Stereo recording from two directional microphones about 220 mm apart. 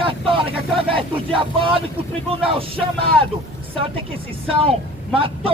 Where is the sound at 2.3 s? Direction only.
25° right (ahead or behind).